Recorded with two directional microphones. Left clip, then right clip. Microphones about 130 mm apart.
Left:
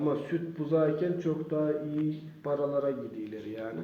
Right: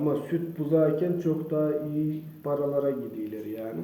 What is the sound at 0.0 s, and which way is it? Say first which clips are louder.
A man's voice: right 3 dB; 15° right (ahead or behind).